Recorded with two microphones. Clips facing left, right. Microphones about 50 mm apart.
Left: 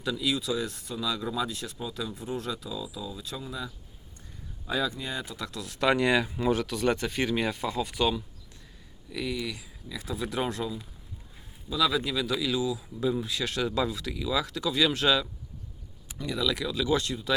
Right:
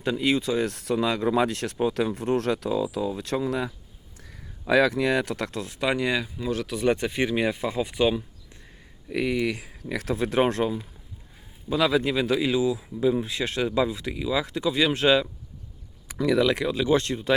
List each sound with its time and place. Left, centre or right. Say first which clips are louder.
0.0 s speech: right 6 dB; right
1.0 s speech: right 6 dB; right
4.2 s speech: right 3 dB; right
5.5 s speech: right 6 dB; right
5.8 s speech: left 1 dB; centre
6.7 s speech: right 3 dB; centre
9.0 s speech: right 8 dB; right
9.9 s speech: right 8 dB; right
10.2 s speech: right 8 dB; right
16.4 s speech: right 6 dB; right